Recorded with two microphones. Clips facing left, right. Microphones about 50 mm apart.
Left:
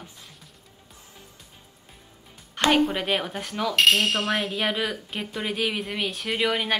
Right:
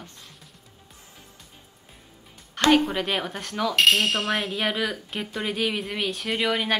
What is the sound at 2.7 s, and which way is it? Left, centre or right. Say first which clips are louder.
Speech: even; centre.